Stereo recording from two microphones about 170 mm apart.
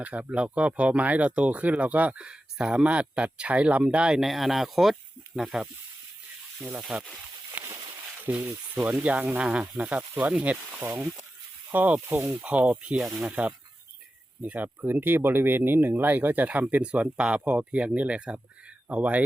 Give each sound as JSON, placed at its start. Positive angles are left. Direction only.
{"t": 0.0, "sound": "speech", "side_deg": -10}
{"t": 7.5, "sound": "a sound", "side_deg": -15}
{"t": 8.2, "sound": "speech", "side_deg": -10}